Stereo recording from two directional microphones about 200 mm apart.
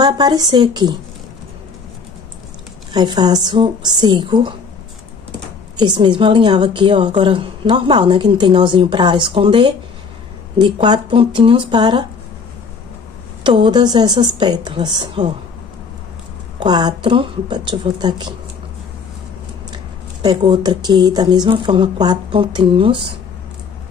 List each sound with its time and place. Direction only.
0.0 s a woman's voice: 20° right (ahead or behind)
2.9 s a woman's voice: 20° right (ahead or behind)
5.8 s a woman's voice: 20° right (ahead or behind)
13.4 s a woman's voice: 25° right (ahead or behind)
16.5 s a woman's voice: 20° right (ahead or behind)
19.7 s a woman's voice: 20° right (ahead or behind)